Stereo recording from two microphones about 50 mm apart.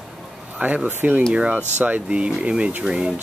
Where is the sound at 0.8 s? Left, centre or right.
Right.